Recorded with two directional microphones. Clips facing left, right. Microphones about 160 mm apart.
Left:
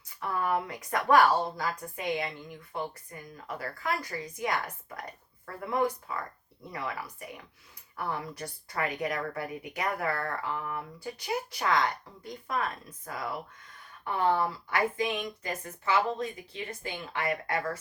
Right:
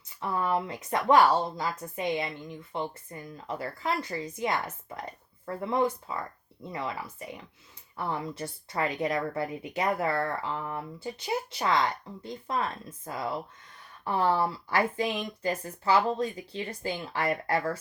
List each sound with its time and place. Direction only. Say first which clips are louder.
0.2 s speech: right 1 dB; 20° right (ahead or behind)